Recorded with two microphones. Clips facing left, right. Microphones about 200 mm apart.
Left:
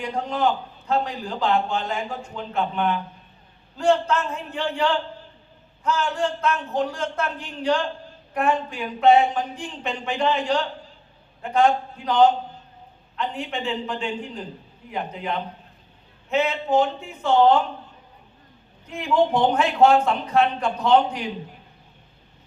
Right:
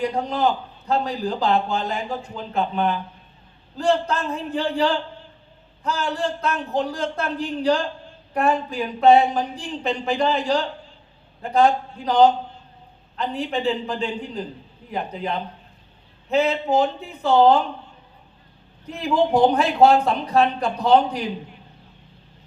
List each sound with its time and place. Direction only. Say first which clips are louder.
0.0 s a man's voice: right 2 dB; 35° right (ahead or behind)
18.9 s a man's voice: right 1 dB; 35° right (ahead or behind)